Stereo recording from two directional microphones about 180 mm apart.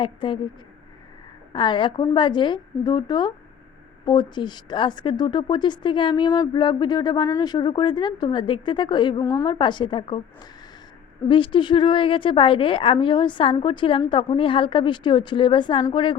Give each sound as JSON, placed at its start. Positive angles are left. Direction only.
{"t": 0.0, "sound": "a woman's voice", "side_deg": 30}
{"t": 1.5, "sound": "a woman's voice", "side_deg": 25}
{"t": 11.3, "sound": "a woman's voice", "side_deg": 25}